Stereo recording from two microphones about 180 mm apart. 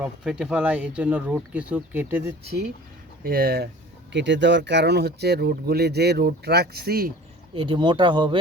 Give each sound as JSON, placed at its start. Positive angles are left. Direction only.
{"t": 0.0, "sound": "speech", "side_deg": -5}
{"t": 3.2, "sound": "speech", "side_deg": -55}
{"t": 4.1, "sound": "speech", "side_deg": -75}
{"t": 7.5, "sound": "speech", "side_deg": -30}